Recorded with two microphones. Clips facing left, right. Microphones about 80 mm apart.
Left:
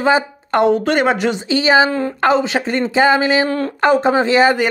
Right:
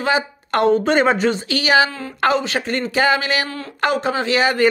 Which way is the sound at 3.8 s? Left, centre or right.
Left.